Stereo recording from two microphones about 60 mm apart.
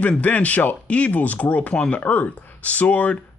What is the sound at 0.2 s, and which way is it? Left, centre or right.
Speech, left.